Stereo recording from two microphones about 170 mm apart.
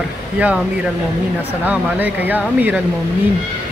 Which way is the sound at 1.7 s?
10° right (ahead or behind).